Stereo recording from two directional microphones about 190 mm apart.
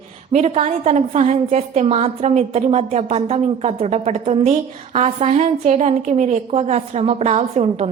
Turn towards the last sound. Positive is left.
turn(degrees=-35)  # may be behind; listen again after turning